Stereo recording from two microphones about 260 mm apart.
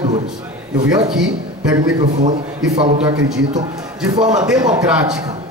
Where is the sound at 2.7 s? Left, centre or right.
Right.